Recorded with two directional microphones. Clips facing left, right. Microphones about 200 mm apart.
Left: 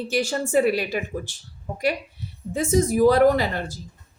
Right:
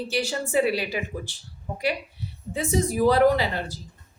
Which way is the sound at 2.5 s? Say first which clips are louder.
Left 4 dB; 45° left (ahead or behind).